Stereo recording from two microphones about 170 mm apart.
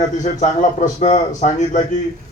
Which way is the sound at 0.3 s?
45° left (ahead or behind).